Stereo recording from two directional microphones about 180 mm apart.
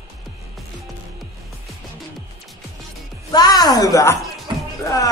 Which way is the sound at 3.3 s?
20° left (ahead or behind).